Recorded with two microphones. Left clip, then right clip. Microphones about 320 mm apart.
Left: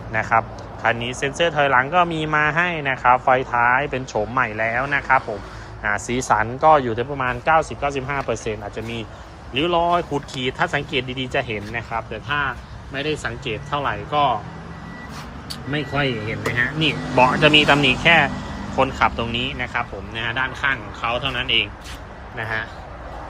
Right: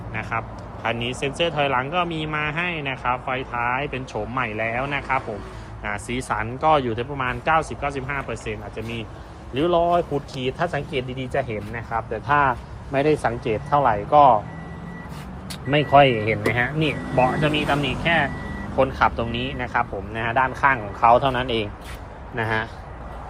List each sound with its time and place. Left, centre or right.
0.1 s speech: centre
2.0 s speech: left
2.3 s speech: centre
6.2 s speech: centre
12.1 s speech: centre
15.7 s speech: centre
16.8 s a man's voice: centre; by 22.7 s right